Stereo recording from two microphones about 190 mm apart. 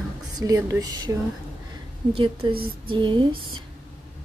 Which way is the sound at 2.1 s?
30° right (ahead or behind).